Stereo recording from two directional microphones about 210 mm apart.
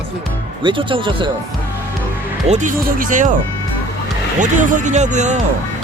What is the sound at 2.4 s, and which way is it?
Speech, 35° right (ahead or behind).